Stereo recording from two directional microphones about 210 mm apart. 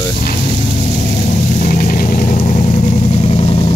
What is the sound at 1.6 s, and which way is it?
Vehicle, 40° left (ahead or behind).